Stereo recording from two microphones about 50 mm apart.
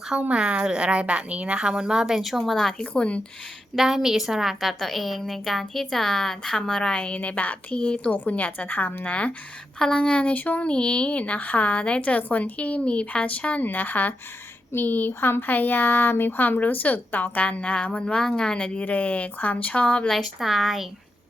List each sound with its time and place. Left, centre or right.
0.1 s a woman's voice: right; by 2.4 s centre
2.4 s a woman's voice: centre
2.7 s a woman's voice: left
3.8 s a woman's voice: centre
7.2 s a woman's voice: left
9.0 s a woman's voice: left
9.7 s a woman's voice: centre
10.3 s a woman's voice: left
10.7 s a woman's voice: left
20.1 s a woman's voice: centre